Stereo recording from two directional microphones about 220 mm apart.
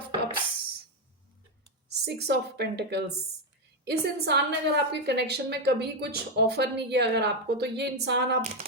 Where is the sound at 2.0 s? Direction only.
50° right (ahead or behind).